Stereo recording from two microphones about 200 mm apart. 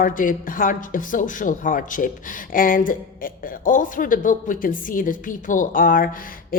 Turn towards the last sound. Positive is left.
turn(degrees=45)  # may be behind; listen again after turning